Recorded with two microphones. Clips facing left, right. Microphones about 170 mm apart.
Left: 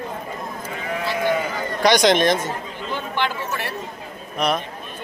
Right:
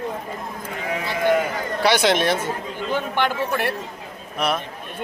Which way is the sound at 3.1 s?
55° right (ahead or behind).